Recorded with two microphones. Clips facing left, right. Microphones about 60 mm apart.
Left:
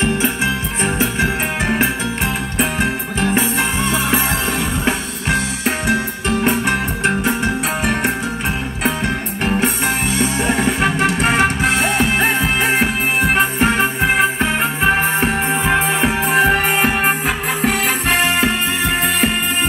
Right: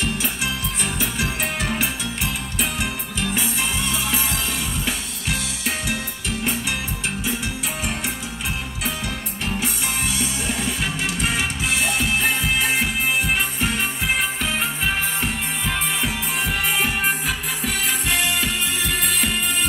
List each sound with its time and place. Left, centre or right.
0.0 s music: left
5.9 s music: left
9.4 s music: left